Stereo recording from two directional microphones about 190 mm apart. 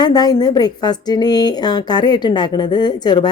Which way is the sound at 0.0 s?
20° left (ahead or behind).